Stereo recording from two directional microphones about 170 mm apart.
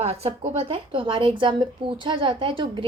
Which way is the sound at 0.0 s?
35° right (ahead or behind).